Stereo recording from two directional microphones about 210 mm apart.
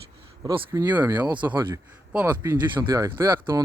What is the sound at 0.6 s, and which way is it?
Speech, 10° right (ahead or behind).